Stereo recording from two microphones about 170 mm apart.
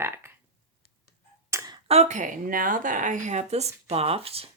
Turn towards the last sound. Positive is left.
turn(degrees=-35)  # may be behind; listen again after turning